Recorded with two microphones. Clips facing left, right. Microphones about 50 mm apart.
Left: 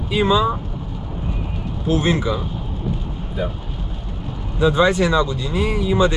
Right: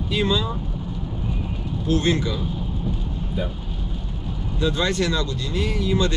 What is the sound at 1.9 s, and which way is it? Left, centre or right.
Speech, centre.